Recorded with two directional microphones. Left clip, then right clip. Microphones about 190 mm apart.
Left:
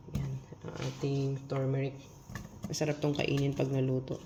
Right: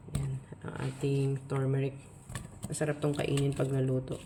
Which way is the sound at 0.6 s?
25° right (ahead or behind).